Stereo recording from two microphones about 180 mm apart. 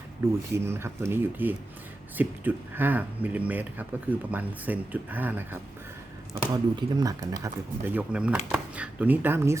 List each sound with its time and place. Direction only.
0.5 s speech: 15° right (ahead or behind)
6.5 s speech: 20° right (ahead or behind)